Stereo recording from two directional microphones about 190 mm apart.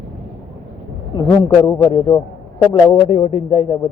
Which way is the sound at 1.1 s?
20° left (ahead or behind).